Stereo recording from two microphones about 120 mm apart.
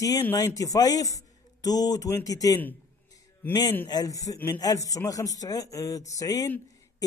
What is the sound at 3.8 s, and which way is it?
Speech, 30° left (ahead or behind).